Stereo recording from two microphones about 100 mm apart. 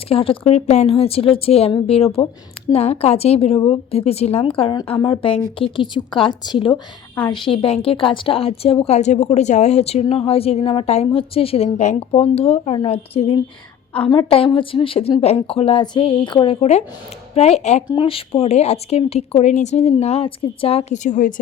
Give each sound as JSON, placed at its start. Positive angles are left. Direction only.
{"t": 0.1, "sound": "a woman's voice", "side_deg": 70}
{"t": 2.7, "sound": "a woman's voice", "side_deg": 90}
{"t": 14.1, "sound": "speech", "side_deg": 65}
{"t": 15.2, "sound": "a woman's voice", "side_deg": 80}
{"t": 16.5, "sound": "speech", "side_deg": 90}
{"t": 17.8, "sound": "speech", "side_deg": 55}